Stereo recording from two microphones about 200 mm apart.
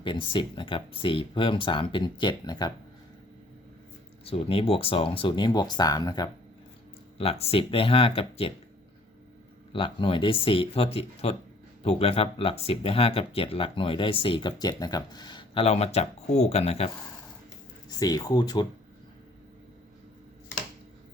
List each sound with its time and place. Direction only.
0.0 s speech: 25° left (ahead or behind)
4.3 s speech: 30° left (ahead or behind)
7.2 s speech: 30° left (ahead or behind)
9.7 s speech: 25° left (ahead or behind)
17.8 s speech: 20° left (ahead or behind)